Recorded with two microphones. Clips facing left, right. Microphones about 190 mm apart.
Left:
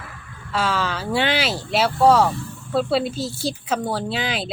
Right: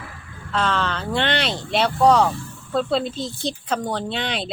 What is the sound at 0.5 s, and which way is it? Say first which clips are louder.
Speech: even; 5° left (ahead or behind).